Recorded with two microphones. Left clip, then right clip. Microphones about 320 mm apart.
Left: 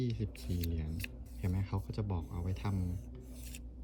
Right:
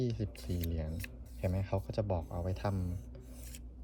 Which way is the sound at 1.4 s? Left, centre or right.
Centre.